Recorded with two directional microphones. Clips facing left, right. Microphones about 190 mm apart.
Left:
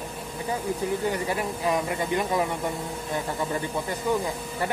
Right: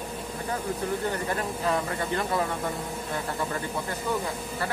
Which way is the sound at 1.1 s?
10° left (ahead or behind).